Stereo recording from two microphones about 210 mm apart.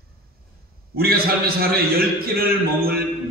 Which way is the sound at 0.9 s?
45° right (ahead or behind).